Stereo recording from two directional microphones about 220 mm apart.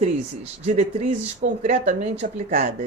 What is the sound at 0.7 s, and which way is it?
Speech, 35° right (ahead or behind).